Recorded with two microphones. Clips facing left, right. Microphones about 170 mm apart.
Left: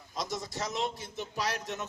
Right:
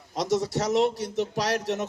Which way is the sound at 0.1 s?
75° right (ahead or behind).